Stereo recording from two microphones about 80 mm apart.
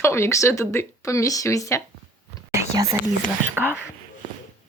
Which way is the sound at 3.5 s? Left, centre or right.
Right.